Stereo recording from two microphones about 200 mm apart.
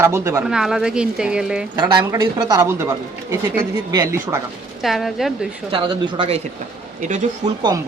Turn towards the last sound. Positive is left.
turn(degrees=-40)  # may be behind; listen again after turning